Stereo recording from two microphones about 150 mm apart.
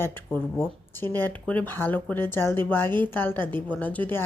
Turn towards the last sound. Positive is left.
turn(degrees=10)  # may be behind; listen again after turning